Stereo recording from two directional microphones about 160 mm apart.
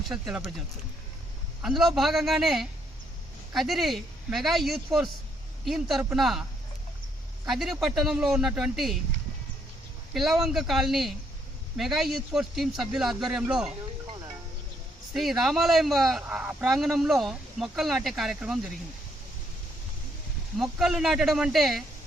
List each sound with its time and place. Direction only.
0.1 s speech: centre (ahead or behind)
1.6 s speech: centre (ahead or behind)
7.4 s speech: centre (ahead or behind)
10.2 s speech: centre (ahead or behind)
15.1 s speech: centre (ahead or behind)
20.6 s speech: 5° right (ahead or behind)